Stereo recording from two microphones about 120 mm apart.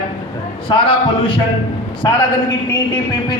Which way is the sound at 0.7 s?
45° left (ahead or behind).